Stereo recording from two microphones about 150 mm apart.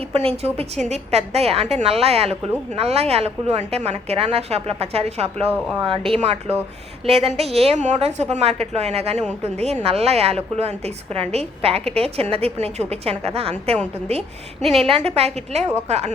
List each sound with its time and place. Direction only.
0.1 s a woman's voice: 45° right (ahead or behind)
14.6 s a woman's voice: centre (ahead or behind)
14.8 s a woman's voice: 45° right (ahead or behind)